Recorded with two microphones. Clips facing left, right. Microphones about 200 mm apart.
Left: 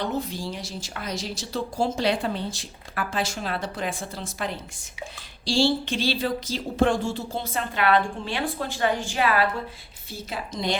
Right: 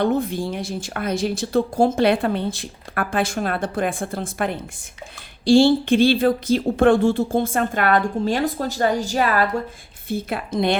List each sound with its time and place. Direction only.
0.0 s speech: 55° right (ahead or behind)
10.1 s speech: 55° right (ahead or behind)